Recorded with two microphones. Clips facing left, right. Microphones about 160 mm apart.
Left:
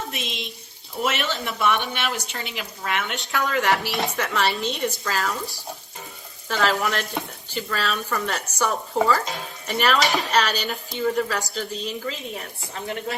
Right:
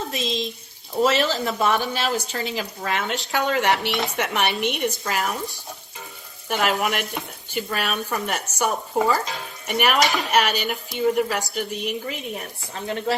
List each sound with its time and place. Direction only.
0.1 s a child's voice: 35° right (ahead or behind); by 12.1 s 15° right (ahead or behind)
12.7 s speech: 30° right (ahead or behind)